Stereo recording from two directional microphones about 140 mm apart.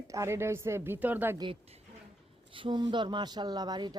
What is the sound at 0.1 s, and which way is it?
A woman's voice, 20° right (ahead or behind).